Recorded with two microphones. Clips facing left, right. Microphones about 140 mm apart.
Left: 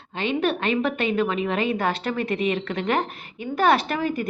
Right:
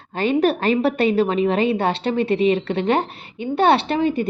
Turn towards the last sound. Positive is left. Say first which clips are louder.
# right 5 dB
turn(degrees=-25)  # may be behind; listen again after turning